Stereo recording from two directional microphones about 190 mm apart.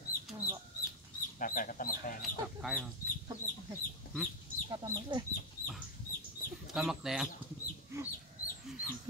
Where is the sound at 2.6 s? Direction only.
Centre (ahead or behind).